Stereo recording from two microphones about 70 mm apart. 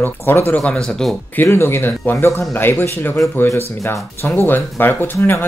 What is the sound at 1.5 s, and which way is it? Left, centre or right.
Speech, left.